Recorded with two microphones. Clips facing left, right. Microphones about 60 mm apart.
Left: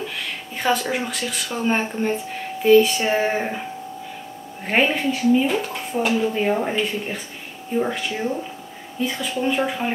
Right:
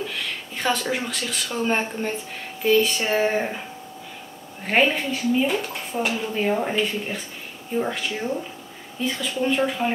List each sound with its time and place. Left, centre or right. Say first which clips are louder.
0.6 s speech: left 3 dB; centre
4.6 s speech: left 1 dB; centre
9.1 s a woman's voice: even; centre